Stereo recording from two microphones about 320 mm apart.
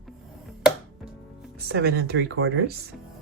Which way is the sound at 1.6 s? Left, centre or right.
Right.